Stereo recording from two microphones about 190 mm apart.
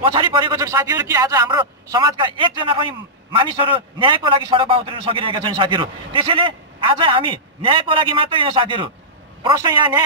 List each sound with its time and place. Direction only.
0.0 s a man's voice: 25° right (ahead or behind)